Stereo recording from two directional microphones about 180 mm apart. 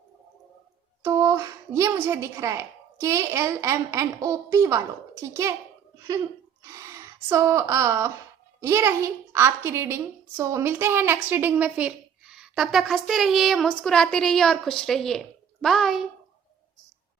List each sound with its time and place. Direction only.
1.0 s a woman's voice: 15° right (ahead or behind)
6.6 s a woman's voice: 15° right (ahead or behind); by 16.0 s centre (ahead or behind)